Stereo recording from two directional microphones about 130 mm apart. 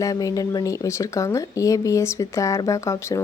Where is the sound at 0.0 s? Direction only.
25° left (ahead or behind).